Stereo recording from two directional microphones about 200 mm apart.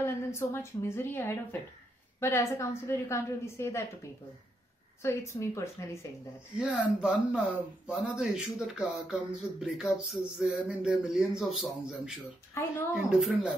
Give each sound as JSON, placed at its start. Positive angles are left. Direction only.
{"t": 0.0, "sound": "a woman's voice", "side_deg": 15}
{"t": 5.0, "sound": "a woman's voice", "side_deg": 15}
{"t": 6.6, "sound": "speech", "side_deg": -5}